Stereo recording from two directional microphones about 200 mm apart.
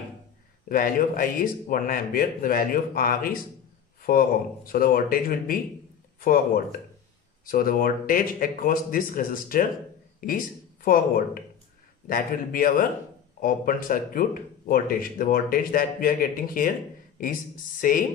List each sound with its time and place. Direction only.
0.7 s speech: 45° left (ahead or behind)